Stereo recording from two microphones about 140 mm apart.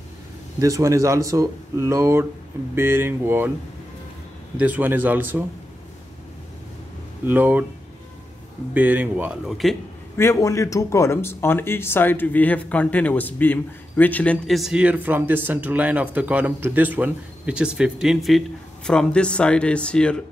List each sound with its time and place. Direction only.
0.6 s speech: 20° right (ahead or behind)
4.6 s speech: 10° right (ahead or behind)
7.2 s speech: 10° right (ahead or behind)
8.7 s speech: 10° right (ahead or behind)
10.1 s speech: 20° left (ahead or behind)